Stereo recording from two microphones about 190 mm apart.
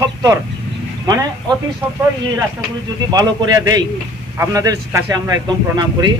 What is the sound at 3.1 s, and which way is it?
A man's voice, 20° right (ahead or behind).